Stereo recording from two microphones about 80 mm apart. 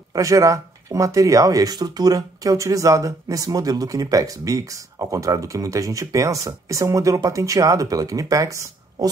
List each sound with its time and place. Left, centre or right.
0.1 s speech: right